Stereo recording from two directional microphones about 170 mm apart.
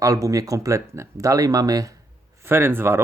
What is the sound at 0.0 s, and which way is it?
Speech, 20° right (ahead or behind).